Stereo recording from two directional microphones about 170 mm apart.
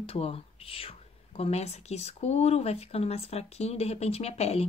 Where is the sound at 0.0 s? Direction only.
35° left (ahead or behind).